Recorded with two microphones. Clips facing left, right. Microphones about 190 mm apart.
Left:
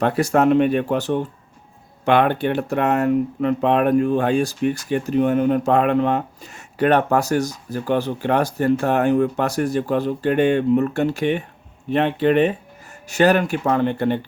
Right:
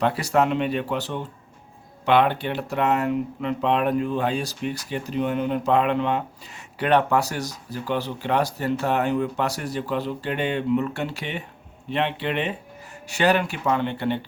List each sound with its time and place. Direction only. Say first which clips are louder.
0.0 s speech: left 4 dB; 45° left (ahead or behind)